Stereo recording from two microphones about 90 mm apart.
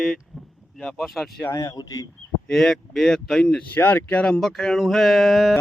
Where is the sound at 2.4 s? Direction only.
5° left (ahead or behind).